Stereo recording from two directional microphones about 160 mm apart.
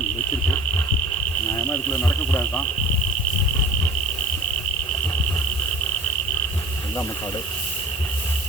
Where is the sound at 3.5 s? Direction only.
15° left (ahead or behind).